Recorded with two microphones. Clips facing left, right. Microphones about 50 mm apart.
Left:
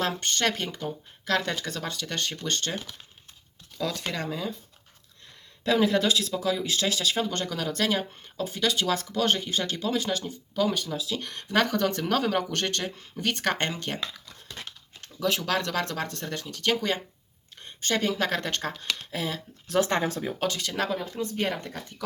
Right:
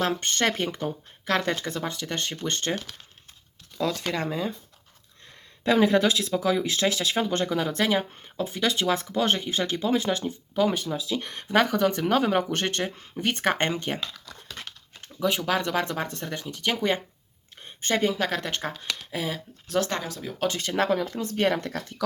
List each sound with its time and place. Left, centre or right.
0.2 s speech: right
4.2 s speech: right
5.6 s speech: right
11.5 s speech: centre
15.0 s speech: centre
18.1 s speech: centre
19.8 s speech: left
20.5 s speech: right
21.2 s speech: right